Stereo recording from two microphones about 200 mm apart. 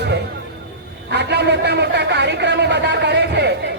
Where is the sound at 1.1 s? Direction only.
55° right (ahead or behind).